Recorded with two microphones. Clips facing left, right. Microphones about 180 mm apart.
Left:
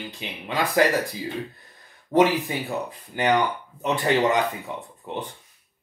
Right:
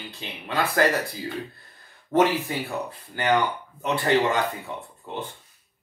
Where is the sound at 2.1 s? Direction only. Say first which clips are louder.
Left 2 dB; 35° left (ahead or behind).